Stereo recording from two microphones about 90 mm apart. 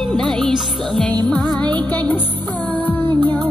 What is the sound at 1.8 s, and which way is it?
Music, 20° left (ahead or behind).